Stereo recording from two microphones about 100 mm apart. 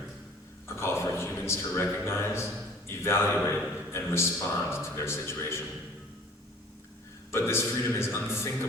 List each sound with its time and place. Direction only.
0.8 s a man's voice: 25° left (ahead or behind)
7.3 s a man's voice: 25° left (ahead or behind)